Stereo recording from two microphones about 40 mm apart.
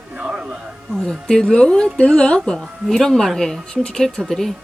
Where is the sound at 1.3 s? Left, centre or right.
Centre.